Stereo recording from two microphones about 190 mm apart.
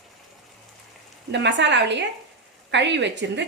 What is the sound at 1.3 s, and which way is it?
A woman's voice, 70° right (ahead or behind).